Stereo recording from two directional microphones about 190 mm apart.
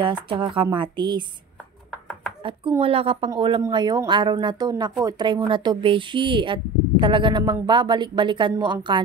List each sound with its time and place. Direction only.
0.0 s speech: 25° right (ahead or behind)
2.8 s a woman's voice: 30° right (ahead or behind)